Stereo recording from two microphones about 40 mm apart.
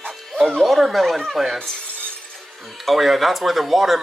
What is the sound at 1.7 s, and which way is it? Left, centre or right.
Shatter, left.